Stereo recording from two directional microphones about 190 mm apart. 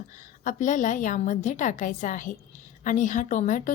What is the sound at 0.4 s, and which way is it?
A woman's voice, 40° left (ahead or behind).